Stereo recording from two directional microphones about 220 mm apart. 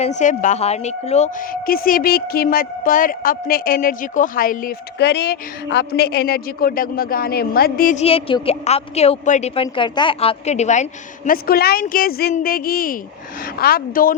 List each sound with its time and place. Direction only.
0.0 s a woman's voice: 35° left (ahead or behind)
8.0 s a woman's voice: 25° left (ahead or behind)
11.3 s a woman's voice: 45° left (ahead or behind)